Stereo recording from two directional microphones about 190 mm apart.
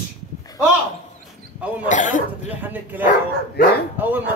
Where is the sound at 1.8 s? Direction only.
40° left (ahead or behind).